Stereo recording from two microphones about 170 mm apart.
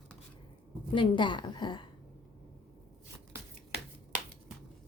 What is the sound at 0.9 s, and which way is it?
Speech, 30° left (ahead or behind).